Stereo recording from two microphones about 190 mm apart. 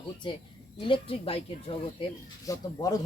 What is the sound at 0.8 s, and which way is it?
Speech, 30° left (ahead or behind).